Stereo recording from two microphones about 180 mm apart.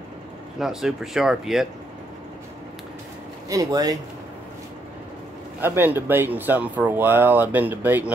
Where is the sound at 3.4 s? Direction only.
20° right (ahead or behind).